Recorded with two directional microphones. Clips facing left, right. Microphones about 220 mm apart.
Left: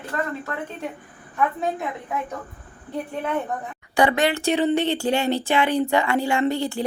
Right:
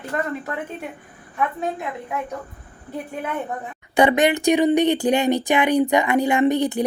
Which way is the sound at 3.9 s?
20° right (ahead or behind).